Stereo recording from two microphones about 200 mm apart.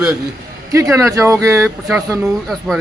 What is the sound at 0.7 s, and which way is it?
A man's voice, 15° right (ahead or behind).